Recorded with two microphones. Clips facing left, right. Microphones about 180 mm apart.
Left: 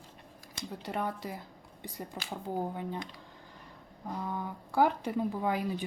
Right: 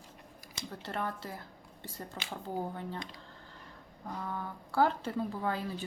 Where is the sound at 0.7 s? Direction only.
15° left (ahead or behind).